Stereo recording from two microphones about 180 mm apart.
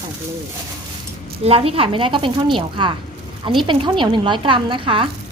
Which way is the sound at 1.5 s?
30° right (ahead or behind).